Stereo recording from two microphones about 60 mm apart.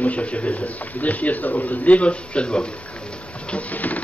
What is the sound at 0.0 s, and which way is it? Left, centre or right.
A man's voice, left.